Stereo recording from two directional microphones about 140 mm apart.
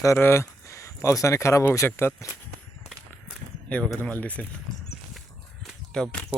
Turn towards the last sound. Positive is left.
turn(degrees=5)  # may be behind; listen again after turning